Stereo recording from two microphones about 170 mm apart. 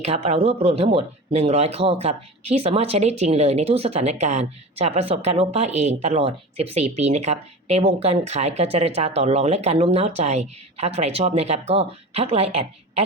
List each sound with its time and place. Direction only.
0.0 s speech: 40° right (ahead or behind)